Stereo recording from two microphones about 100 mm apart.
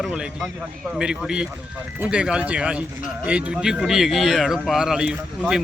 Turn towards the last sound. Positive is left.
turn(degrees=-10)  # may be behind; listen again after turning